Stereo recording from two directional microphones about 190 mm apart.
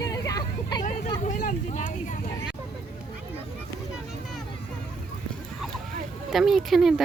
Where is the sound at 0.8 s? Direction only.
40° left (ahead or behind).